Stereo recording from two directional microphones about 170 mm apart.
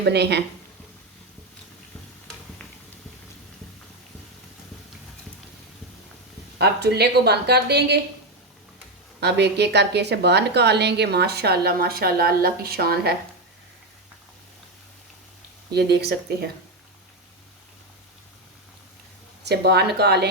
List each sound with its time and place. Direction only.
0.0 s a woman's voice: 80° right
6.6 s a woman's voice: 75° right (ahead or behind)
9.2 s a woman's voice: 85° right; by 13.1 s 65° right (ahead or behind)
15.7 s a woman's voice: 75° right (ahead or behind)
19.5 s a woman's voice: 80° right